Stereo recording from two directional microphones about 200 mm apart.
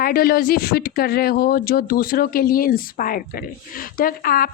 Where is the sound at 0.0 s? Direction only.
50° left (ahead or behind).